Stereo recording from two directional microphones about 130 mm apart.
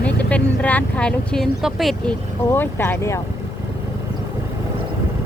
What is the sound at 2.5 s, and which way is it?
Speech, 15° left (ahead or behind).